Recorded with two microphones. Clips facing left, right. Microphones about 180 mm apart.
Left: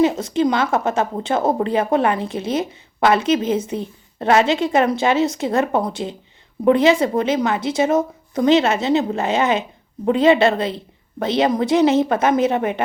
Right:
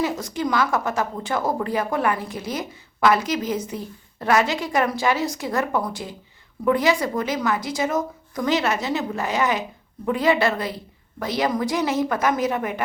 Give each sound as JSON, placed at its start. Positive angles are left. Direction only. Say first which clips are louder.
{"t": 0.0, "sound": "a woman's voice", "louder": "left 8 dB", "side_deg": 25}